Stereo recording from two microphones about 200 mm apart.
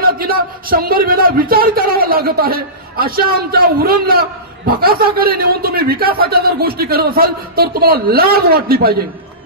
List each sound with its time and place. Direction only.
0.0 s speech: 45° right (ahead or behind)